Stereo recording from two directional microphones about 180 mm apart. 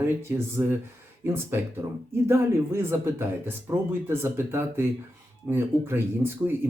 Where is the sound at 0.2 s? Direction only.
15° right (ahead or behind).